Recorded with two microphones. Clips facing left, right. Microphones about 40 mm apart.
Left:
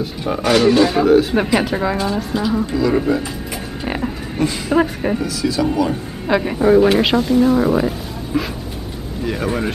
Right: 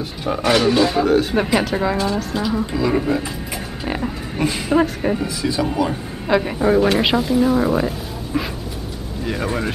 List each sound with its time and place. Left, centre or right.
0.0 s speech: centre
2.6 s speech: centre
3.8 s pig: centre
4.4 s speech: centre
4.7 s speech: centre
5.2 s speech: right
6.2 s speech: centre
9.2 s speech: centre